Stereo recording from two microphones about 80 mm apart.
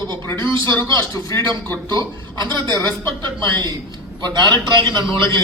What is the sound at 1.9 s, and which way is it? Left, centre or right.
A man's voice, right.